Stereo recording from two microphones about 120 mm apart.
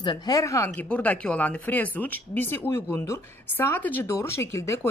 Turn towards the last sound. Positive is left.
turn(degrees=25)  # may be behind; listen again after turning